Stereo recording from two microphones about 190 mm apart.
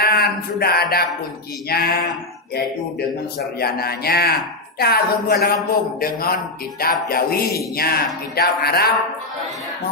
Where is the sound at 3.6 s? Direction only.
55° left (ahead or behind).